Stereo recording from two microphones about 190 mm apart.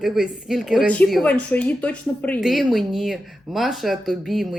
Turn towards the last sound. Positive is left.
turn(degrees=0)  # may be behind; listen again after turning